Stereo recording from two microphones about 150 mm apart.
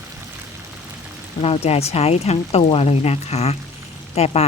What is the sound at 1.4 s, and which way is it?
Speech, 40° left (ahead or behind).